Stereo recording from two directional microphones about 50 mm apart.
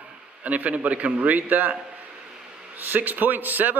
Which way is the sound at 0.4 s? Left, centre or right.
Right.